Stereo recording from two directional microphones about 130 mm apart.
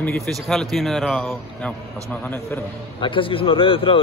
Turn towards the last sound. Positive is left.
turn(degrees=45)  # may be behind; listen again after turning